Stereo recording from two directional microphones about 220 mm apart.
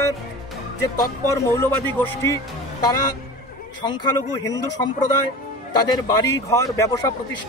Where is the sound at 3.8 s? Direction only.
20° left (ahead or behind).